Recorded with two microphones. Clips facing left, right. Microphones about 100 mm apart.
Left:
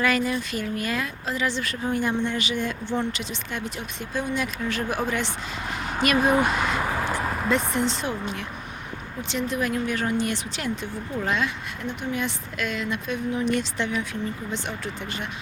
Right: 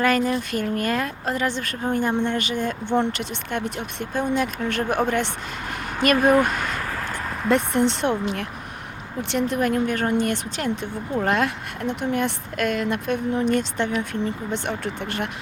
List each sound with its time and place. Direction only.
0.0 s speech: 45° right (ahead or behind)
6.1 s a sound: 10° left (ahead or behind)
7.5 s speech: 60° right (ahead or behind)